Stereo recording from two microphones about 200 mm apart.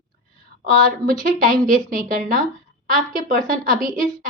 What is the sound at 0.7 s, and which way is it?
A woman's voice, 45° right (ahead or behind).